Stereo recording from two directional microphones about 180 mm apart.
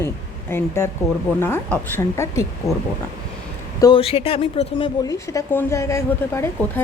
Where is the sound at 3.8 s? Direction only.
25° left (ahead or behind).